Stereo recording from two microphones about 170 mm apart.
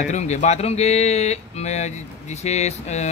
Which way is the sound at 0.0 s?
45° left (ahead or behind).